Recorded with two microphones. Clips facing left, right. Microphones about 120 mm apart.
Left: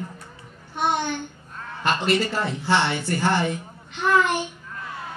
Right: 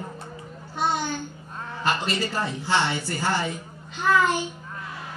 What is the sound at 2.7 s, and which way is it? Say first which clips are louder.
A man's voice: left 1 dB; 20° left (ahead or behind).